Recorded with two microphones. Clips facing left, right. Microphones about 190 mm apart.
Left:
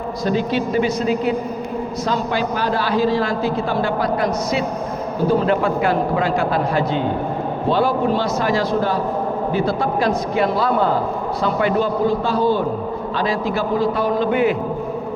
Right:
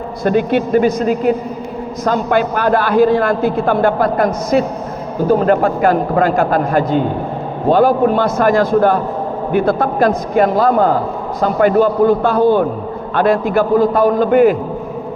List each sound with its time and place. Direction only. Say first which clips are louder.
0.3 s a man's voice: right 6 dB; 55° right (ahead or behind)